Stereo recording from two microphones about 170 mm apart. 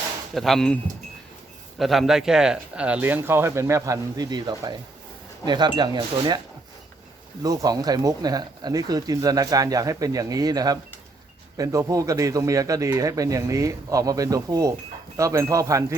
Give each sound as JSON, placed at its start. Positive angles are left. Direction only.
{"t": 0.3, "sound": "speech", "side_deg": 0}
{"t": 1.8, "sound": "speech", "side_deg": 0}
{"t": 7.4, "sound": "speech", "side_deg": -20}